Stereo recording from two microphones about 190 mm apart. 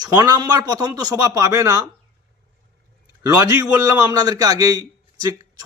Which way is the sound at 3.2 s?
20° right (ahead or behind).